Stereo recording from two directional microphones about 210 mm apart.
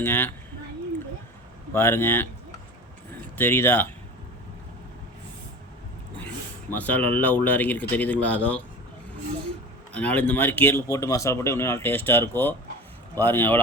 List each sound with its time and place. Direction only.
0.0 s speech: 10° left (ahead or behind)
1.7 s speech: 10° left (ahead or behind)
3.3 s speech: 10° left (ahead or behind)
6.1 s a sound: 10° left (ahead or behind)
7.4 s speech: 10° left (ahead or behind)
9.9 s speech: 5° left (ahead or behind)